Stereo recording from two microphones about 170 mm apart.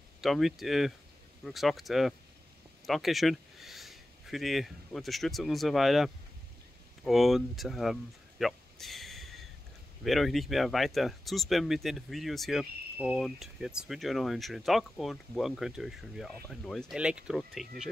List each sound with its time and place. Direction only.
0.2 s speech: centre (ahead or behind)